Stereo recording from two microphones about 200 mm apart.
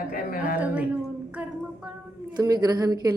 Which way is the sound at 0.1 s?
45° left (ahead or behind).